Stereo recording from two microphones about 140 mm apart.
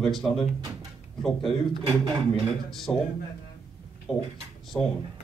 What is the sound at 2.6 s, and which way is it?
Speech, centre (ahead or behind).